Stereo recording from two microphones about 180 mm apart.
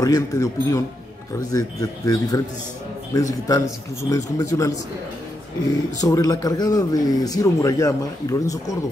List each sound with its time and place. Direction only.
0.0 s a man's voice: 20° left (ahead or behind)
5.9 s a man's voice: 20° left (ahead or behind)